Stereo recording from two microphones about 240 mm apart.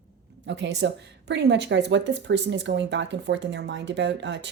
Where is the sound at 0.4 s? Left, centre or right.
Right.